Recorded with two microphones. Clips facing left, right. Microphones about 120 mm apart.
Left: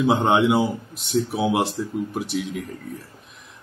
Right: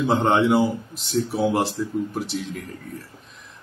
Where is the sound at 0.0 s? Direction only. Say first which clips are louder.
Left 1 dB; 10° left (ahead or behind).